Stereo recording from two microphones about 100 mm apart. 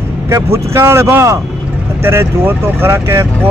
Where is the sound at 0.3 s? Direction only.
25° right (ahead or behind).